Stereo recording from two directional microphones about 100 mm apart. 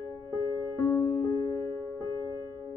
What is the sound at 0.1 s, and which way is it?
Music, 30° left (ahead or behind).